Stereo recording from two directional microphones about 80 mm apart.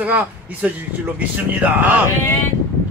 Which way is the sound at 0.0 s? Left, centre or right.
Centre.